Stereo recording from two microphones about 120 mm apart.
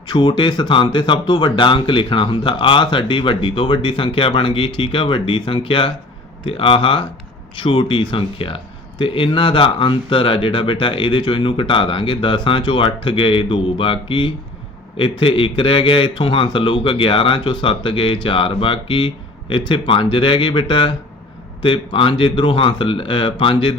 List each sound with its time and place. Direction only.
0.1 s speech: 40° left (ahead or behind)